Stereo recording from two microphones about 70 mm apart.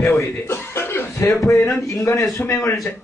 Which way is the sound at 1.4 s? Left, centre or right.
Left.